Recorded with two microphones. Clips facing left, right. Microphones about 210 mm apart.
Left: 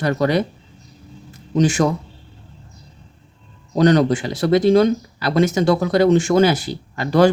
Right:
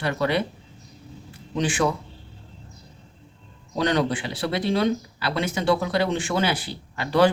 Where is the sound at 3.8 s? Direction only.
45° left (ahead or behind).